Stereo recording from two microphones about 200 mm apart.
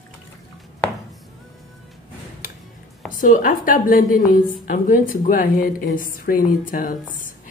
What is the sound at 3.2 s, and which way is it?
A woman's voice, 45° left (ahead or behind).